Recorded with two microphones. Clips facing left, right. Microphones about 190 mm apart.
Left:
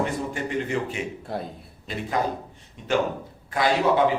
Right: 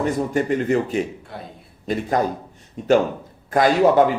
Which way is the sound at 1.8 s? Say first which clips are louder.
Right 5 dB; 45° right (ahead or behind).